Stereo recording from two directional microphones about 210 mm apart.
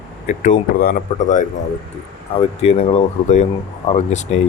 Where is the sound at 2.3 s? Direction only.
30° left (ahead or behind).